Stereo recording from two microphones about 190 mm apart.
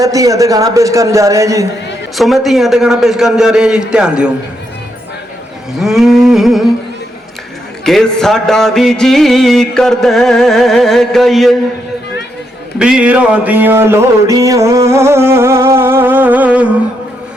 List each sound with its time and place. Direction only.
0.0 s music: 20° right (ahead or behind)
2.1 s music: centre (ahead or behind)
5.8 s music: centre (ahead or behind)
7.9 s music: 5° left (ahead or behind)
12.8 s music: 5° right (ahead or behind)